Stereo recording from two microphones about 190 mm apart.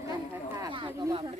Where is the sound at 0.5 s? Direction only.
25° right (ahead or behind).